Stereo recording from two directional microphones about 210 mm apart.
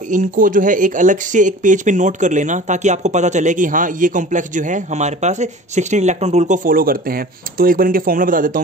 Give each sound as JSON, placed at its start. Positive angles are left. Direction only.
{"t": 0.1, "sound": "speech", "side_deg": -40}